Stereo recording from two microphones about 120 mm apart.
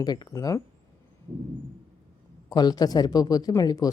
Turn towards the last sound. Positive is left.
turn(degrees=30)  # may be behind; listen again after turning